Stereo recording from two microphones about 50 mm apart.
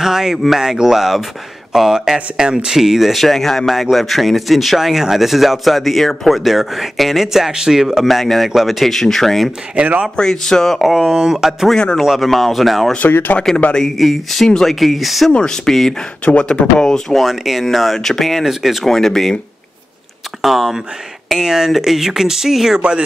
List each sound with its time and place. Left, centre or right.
0.0 s speech: centre
9.8 s speech: right
10.1 s speech: centre
10.8 s speech: centre
11.7 s speech: centre
12.0 s speech: centre
15.3 s speech: centre
17.2 s speech: centre
18.4 s speech: centre
18.9 s speech: centre
20.4 s speech: centre
22.8 s speech: centre